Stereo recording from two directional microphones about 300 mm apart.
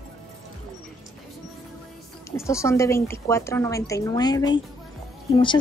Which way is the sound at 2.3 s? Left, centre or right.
Centre.